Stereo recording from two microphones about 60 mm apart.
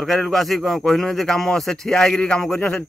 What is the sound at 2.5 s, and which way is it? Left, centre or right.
Speech, left.